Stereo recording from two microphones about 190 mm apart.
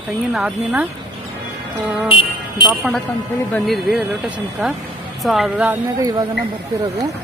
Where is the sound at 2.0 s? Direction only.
25° left (ahead or behind).